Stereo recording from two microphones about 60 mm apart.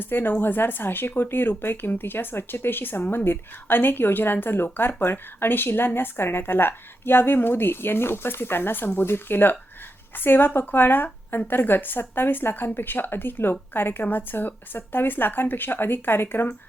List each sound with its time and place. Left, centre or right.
0.0 s speech: left